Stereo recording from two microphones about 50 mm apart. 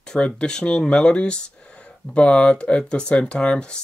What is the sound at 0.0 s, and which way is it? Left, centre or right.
Speech, centre.